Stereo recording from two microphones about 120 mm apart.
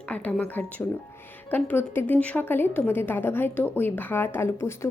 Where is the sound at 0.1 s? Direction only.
10° left (ahead or behind).